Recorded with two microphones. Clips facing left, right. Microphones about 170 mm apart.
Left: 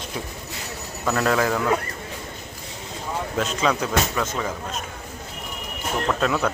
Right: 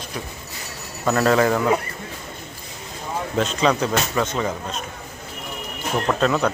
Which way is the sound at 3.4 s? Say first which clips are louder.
Right 4 dB; 5° left (ahead or behind).